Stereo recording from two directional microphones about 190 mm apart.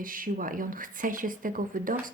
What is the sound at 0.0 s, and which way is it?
A woman's voice, 45° right (ahead or behind).